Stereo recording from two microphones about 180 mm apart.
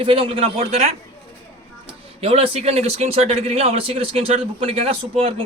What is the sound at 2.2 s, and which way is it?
Speech, 35° right (ahead or behind).